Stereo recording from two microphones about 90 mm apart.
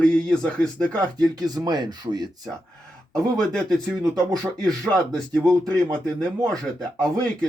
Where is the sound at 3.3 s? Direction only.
5° left (ahead or behind).